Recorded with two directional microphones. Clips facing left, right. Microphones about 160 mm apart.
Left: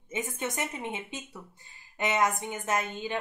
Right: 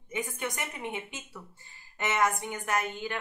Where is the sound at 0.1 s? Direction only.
25° left (ahead or behind).